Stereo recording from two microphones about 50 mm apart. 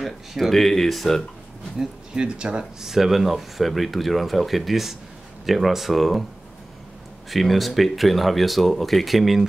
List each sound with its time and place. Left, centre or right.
0.0 s speech: centre
1.8 s speech: centre
2.8 s speech: centre
7.2 s speech: centre